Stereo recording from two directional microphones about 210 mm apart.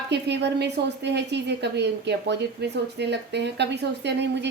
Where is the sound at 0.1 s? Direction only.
55° right (ahead or behind).